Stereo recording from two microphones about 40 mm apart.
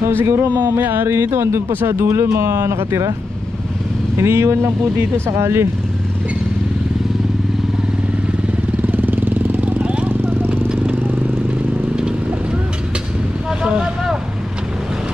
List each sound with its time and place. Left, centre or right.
0.1 s speech: right
0.7 s speech: right
4.3 s speech: right
8.8 s vehicle: right
9.8 s vehicle: right